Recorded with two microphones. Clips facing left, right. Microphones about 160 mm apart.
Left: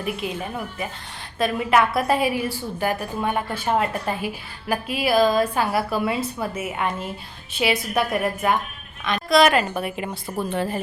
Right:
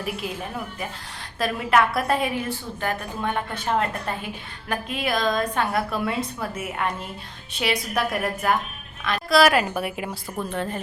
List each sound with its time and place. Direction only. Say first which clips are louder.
0.0 s a woman's voice: left 2 dB; centre (ahead or behind)